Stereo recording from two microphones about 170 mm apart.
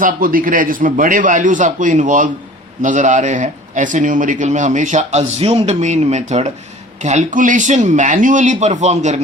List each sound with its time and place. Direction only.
0.0 s speech: 55° right (ahead or behind)